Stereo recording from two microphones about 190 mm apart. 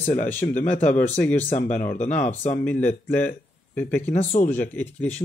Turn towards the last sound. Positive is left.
turn(degrees=10)  # may be behind; listen again after turning